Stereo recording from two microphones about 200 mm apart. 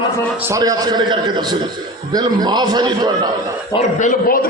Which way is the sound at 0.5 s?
20° right (ahead or behind).